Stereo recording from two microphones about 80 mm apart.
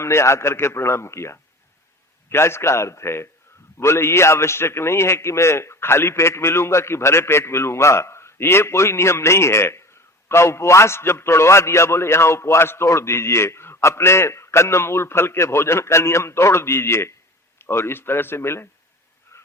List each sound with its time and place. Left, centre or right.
0.0 s a man's voice: left